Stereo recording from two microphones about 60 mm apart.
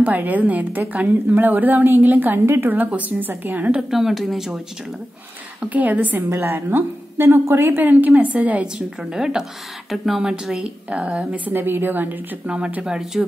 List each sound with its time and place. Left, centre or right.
0.0 s a woman's voice: right
2.7 s a woman's voice: right
3.9 s speech: centre
5.6 s a woman's voice: right
8.7 s a woman's voice: centre
10.9 s a woman's voice: right
12.4 s a woman's voice: centre